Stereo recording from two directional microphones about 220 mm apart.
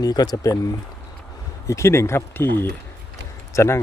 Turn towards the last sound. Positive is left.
turn(degrees=10)  # may be behind; listen again after turning